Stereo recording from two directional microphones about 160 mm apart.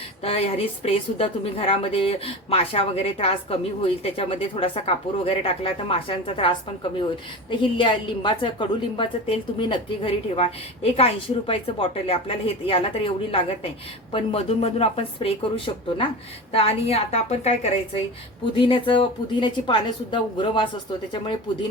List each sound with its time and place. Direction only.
0.2 s a woman's voice: 40° left (ahead or behind)
7.5 s a woman's voice: 30° left (ahead or behind)
18.5 s a woman's voice: 30° left (ahead or behind)